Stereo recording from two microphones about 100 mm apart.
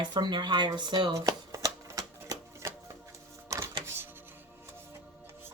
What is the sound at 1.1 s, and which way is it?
Shuffling cards, 35° right (ahead or behind).